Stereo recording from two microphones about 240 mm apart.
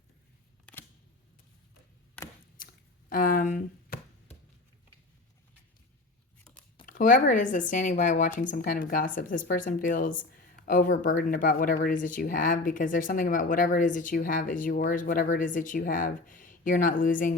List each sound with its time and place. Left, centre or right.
0.6 s camera: centre
3.1 s a sound: left
6.8 s speech: left